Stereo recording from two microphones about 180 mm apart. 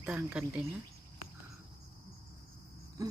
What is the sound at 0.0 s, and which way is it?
Speech, 10° right (ahead or behind).